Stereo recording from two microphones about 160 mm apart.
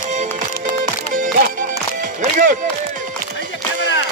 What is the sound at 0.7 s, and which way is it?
Music, 55° right (ahead or behind).